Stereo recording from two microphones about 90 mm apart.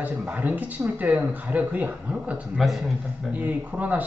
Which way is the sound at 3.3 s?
15° right (ahead or behind).